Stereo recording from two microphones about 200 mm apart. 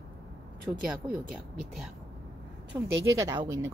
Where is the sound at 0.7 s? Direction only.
10° right (ahead or behind).